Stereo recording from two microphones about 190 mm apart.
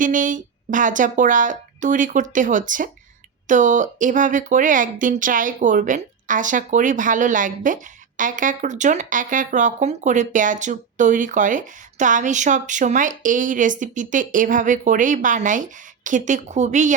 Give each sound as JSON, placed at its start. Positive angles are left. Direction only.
{"t": 0.0, "sound": "speech", "side_deg": -45}